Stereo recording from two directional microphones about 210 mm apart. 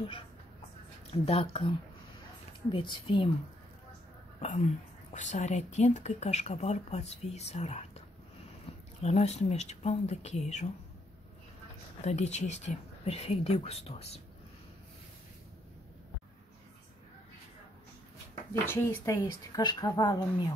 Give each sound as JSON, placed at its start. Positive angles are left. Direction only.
{"t": 1.1, "sound": "speech", "side_deg": 25}
{"t": 5.1, "sound": "speech", "side_deg": 35}
{"t": 9.0, "sound": "speech", "side_deg": 30}
{"t": 12.0, "sound": "speech", "side_deg": 30}
{"t": 18.7, "sound": "speech", "side_deg": 10}